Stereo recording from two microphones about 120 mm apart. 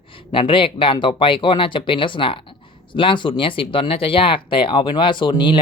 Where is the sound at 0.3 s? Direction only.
45° left (ahead or behind).